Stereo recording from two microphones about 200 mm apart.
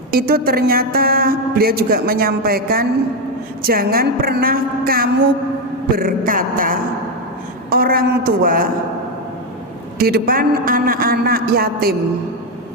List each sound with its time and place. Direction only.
0.1 s a man's voice: 50° right (ahead or behind)
10.0 s a man's voice: 50° right (ahead or behind)